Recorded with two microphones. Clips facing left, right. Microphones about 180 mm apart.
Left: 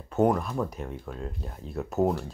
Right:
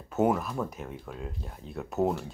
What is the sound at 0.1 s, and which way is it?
Speech, 5° right (ahead or behind).